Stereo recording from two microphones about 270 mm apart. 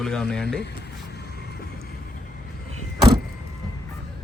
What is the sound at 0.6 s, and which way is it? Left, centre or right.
Vehicle, left.